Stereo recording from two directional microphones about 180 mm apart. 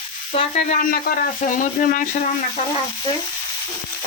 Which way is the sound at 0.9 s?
50° left (ahead or behind).